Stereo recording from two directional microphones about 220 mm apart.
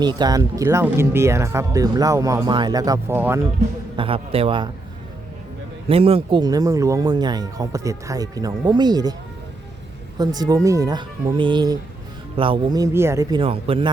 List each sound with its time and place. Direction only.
0.0 s speech: 20° right (ahead or behind)
3.9 s a man's voice: 25° right (ahead or behind)
5.9 s speech: 25° right (ahead or behind)
10.2 s a man's voice: 15° right (ahead or behind)